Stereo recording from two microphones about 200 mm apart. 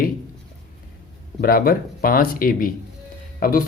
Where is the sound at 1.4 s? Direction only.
45° left (ahead or behind).